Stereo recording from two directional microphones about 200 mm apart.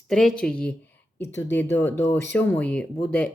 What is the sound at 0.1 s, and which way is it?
Speech, 5° left (ahead or behind).